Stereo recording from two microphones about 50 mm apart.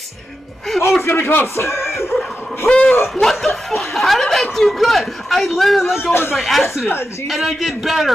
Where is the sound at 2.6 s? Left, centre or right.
Left.